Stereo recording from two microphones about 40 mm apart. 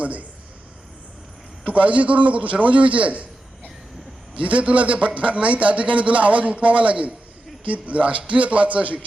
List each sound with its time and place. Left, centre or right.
0.0 s a man's voice: right
1.6 s a man's voice: right